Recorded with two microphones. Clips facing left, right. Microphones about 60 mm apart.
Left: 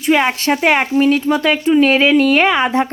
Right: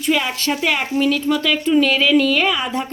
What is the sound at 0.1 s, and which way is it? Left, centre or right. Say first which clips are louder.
A woman's voice: left 6 dB; left.